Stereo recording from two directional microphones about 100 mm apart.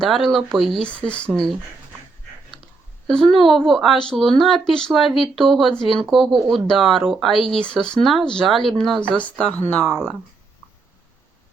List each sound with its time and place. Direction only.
0.0 s speech: 5° left (ahead or behind)
3.1 s speech: 5° left (ahead or behind)
9.0 s speech: 10° left (ahead or behind)